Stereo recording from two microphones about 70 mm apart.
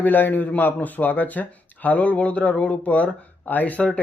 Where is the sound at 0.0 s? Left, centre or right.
Left.